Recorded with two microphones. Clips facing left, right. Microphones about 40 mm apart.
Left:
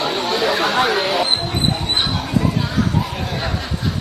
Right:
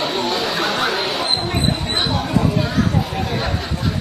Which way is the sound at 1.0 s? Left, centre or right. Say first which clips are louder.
Left 3 dB; left.